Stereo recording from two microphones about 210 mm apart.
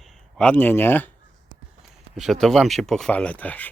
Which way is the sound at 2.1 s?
Centre (ahead or behind).